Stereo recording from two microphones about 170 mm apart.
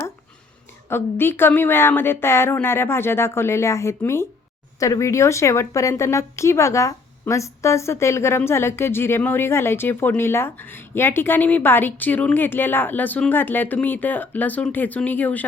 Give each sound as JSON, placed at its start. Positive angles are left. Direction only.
{"t": 0.9, "sound": "a woman's voice", "side_deg": 15}